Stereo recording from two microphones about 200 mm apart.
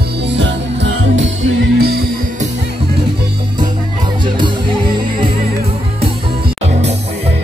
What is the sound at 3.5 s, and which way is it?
Music, 20° right (ahead or behind).